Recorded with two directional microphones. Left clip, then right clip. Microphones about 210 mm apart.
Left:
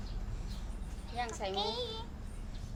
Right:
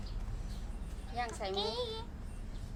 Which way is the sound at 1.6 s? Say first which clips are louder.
Even; 10° right (ahead or behind).